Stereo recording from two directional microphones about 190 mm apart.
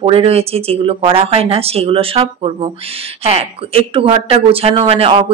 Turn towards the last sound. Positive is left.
turn(degrees=-30)  # may be behind; listen again after turning